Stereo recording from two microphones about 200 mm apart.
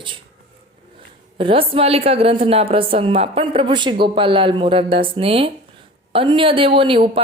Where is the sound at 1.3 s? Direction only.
25° right (ahead or behind).